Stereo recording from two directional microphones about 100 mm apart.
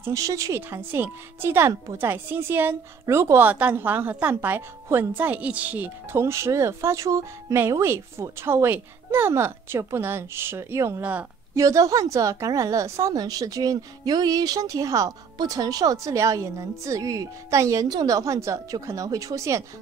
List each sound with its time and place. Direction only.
0.0 s a woman's voice: 30° right (ahead or behind)